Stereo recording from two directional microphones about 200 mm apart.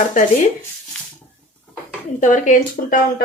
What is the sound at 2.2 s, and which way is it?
Speech, 40° left (ahead or behind).